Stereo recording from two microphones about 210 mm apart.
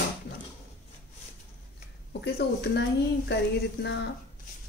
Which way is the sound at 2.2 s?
55° left (ahead or behind).